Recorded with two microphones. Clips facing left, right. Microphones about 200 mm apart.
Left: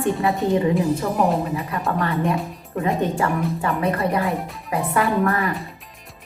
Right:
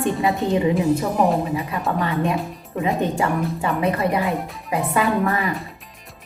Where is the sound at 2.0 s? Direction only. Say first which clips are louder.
Even; 20° right (ahead or behind).